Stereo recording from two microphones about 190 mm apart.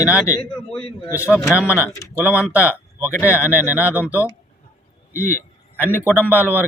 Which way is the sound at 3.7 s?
10° right (ahead or behind).